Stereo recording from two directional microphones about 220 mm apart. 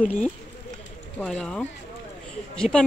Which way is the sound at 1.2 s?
5° left (ahead or behind).